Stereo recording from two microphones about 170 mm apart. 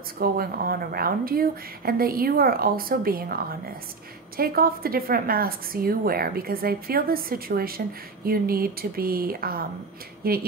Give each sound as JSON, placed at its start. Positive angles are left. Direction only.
{"t": 0.2, "sound": "a woman's voice", "side_deg": -60}
{"t": 4.4, "sound": "a woman's voice", "side_deg": -60}